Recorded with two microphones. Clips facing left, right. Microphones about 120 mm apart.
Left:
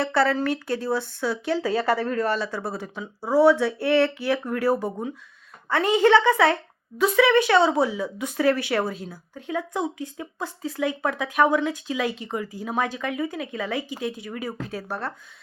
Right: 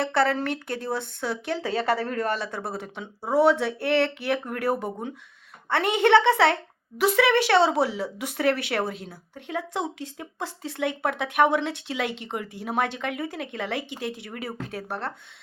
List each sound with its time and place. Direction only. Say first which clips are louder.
0.0 s speech: left 2 dB; 55° right (ahead or behind)
1.6 s speech: left 1 dB; 30° left (ahead or behind)
2.3 s speech: left 2 dB; 55° right (ahead or behind)
3.0 s speech: left 2 dB; 25° right (ahead or behind)
3.3 s speech: left 3 dB; 60° right (ahead or behind)
4.8 s speech: left 3 dB; 25° right (ahead or behind)
5.6 s speech: left 3 dB; 65° right (ahead or behind)
14.3 s speech: left 3 dB; 60° right (ahead or behind)